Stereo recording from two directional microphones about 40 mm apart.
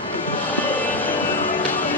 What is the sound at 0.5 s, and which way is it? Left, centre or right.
Music, left.